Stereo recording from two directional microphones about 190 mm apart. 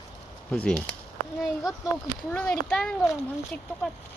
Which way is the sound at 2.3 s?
5° left (ahead or behind).